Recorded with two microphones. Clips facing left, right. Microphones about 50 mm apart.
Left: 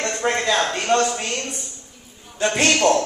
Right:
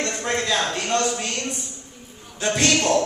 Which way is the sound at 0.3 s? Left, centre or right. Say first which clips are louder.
Left 2 dB; centre.